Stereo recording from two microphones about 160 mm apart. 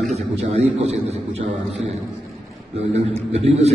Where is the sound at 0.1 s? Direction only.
40° right (ahead or behind).